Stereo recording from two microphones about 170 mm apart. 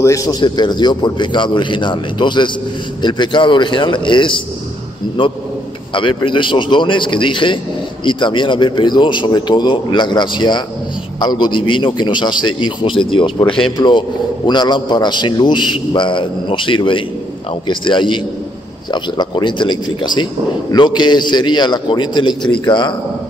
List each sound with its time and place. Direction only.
0.0 s a man's voice: 20° left (ahead or behind)